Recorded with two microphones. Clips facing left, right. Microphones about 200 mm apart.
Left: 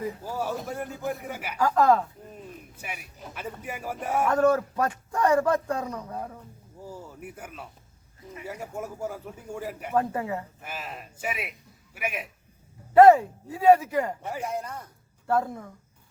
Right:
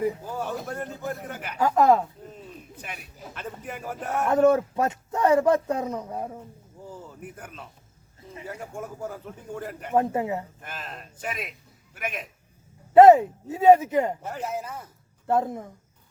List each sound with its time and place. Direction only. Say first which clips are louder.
0.3 s a man's voice: even; 10° left (ahead or behind)
1.5 s speech: right 2 dB; 20° right (ahead or behind)
2.7 s a man's voice: even; 10° left (ahead or behind)
4.3 s speech: right 4 dB; 25° right (ahead or behind)
6.8 s a man's voice: even; 10° left (ahead or behind)
9.9 s speech: right 3 dB; 25° right (ahead or behind)
10.6 s a man's voice: left 1 dB; 10° left (ahead or behind)
12.9 s speech: right 2 dB; 20° right (ahead or behind)
14.4 s speech: right 2 dB; 5° right (ahead or behind)
15.3 s speech: right 2 dB; 20° right (ahead or behind)